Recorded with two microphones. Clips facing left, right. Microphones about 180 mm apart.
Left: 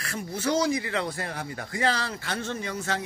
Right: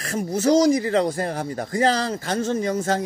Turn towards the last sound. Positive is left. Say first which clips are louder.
# right 9 dB
turn(degrees=-45)  # may be behind; listen again after turning